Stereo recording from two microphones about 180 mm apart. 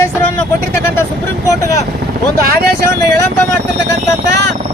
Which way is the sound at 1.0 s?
15° left (ahead or behind).